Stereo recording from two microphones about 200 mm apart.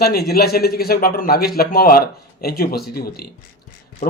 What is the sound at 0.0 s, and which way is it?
A man's voice, 50° left (ahead or behind).